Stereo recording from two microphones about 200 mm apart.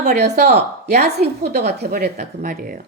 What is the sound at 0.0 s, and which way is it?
Speech, 55° right (ahead or behind).